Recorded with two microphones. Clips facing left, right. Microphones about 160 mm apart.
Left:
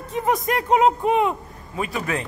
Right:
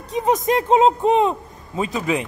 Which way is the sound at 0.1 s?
20° right (ahead or behind).